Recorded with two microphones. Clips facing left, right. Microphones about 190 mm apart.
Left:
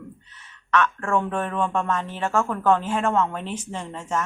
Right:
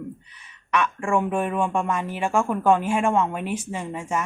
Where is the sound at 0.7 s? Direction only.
10° right (ahead or behind).